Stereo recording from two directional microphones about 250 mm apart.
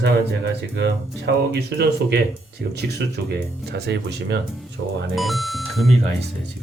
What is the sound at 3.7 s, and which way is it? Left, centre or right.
Speech, right.